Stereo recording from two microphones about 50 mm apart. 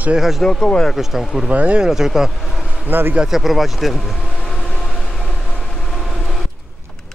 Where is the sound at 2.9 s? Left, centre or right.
Right.